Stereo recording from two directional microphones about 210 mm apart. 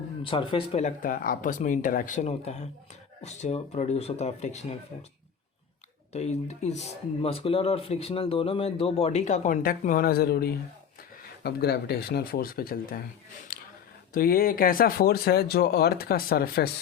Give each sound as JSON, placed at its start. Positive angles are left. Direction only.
{"t": 0.2, "sound": "speech", "side_deg": 25}
{"t": 6.1, "sound": "speech", "side_deg": 30}
{"t": 13.5, "sound": "a sound", "side_deg": 45}
{"t": 14.1, "sound": "speech", "side_deg": 45}